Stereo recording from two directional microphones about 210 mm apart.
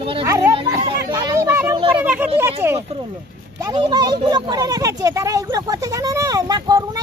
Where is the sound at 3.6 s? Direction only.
20° right (ahead or behind).